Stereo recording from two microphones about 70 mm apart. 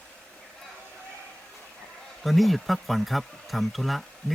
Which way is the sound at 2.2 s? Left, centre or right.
Centre.